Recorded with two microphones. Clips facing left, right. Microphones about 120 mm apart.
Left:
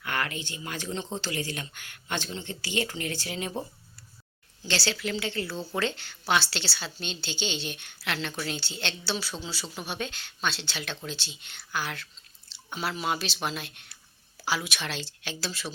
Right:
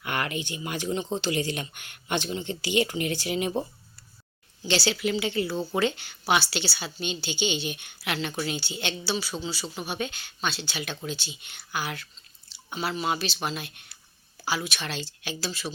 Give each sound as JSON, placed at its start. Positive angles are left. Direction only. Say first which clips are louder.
{"t": 0.0, "sound": "a woman's voice", "louder": "right 2 dB", "side_deg": -20}
{"t": 4.6, "sound": "a woman's voice", "louder": "right 4 dB", "side_deg": -15}